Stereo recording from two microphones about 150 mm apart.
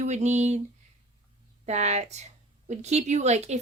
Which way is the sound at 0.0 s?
50° right (ahead or behind).